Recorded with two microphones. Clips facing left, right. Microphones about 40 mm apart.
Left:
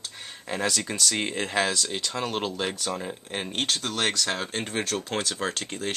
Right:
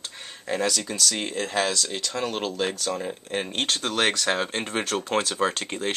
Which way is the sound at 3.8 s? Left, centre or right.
Centre.